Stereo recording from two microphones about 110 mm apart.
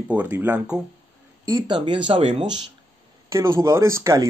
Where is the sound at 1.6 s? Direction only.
45° right (ahead or behind).